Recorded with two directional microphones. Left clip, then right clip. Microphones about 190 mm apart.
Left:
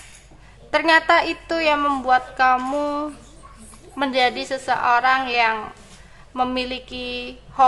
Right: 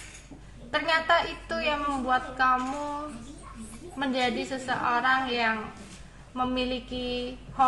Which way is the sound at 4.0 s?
30° left (ahead or behind).